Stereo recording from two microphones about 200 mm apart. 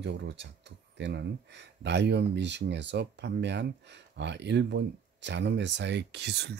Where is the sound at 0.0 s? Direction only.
60° right (ahead or behind).